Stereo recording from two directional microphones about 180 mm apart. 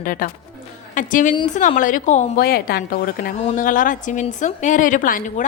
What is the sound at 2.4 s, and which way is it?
Speech, 60° left (ahead or behind).